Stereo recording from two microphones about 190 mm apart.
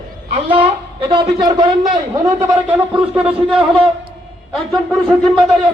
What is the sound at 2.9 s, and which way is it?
Speech, 5° right (ahead or behind).